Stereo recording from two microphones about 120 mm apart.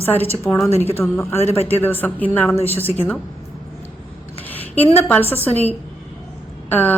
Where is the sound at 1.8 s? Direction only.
15° left (ahead or behind).